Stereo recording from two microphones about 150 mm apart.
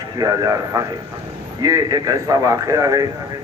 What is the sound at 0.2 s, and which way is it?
Speech, 25° right (ahead or behind).